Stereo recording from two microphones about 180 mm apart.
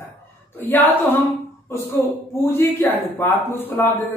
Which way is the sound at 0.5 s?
10° left (ahead or behind).